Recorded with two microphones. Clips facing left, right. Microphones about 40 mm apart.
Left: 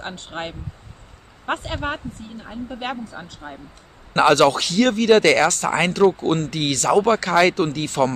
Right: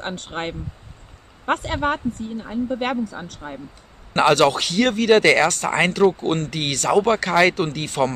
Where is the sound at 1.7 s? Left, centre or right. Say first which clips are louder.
Right 4 dB; right.